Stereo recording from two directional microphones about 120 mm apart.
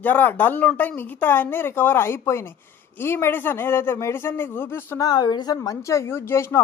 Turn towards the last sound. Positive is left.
turn(degrees=20)  # may be behind; listen again after turning